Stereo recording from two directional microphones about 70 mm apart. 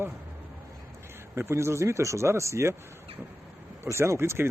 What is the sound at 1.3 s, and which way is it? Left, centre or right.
Speech, right.